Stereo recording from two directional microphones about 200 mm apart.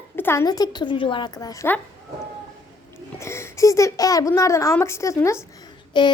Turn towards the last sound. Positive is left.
turn(degrees=20)  # may be behind; listen again after turning